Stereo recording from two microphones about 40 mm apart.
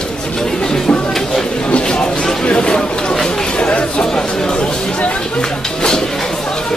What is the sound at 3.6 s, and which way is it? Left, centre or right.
Chatter, left.